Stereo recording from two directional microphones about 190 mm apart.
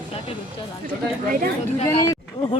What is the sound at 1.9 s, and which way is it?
Speech, 15° left (ahead or behind).